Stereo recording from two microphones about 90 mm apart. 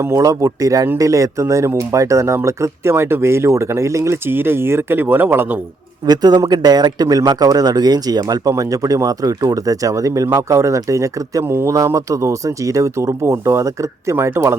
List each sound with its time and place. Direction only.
0.0 s speech: 35° right (ahead or behind)
6.1 s a man's voice: 50° right (ahead or behind); by 14.5 s 30° right (ahead or behind)